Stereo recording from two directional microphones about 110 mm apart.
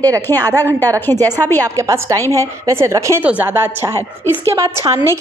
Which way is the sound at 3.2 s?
15° right (ahead or behind).